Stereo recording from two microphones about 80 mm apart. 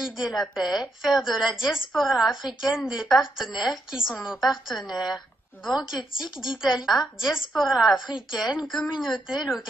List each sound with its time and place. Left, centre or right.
0.0 s a woman's voice: centre
5.9 s speech: left
6.4 s a woman's voice: centre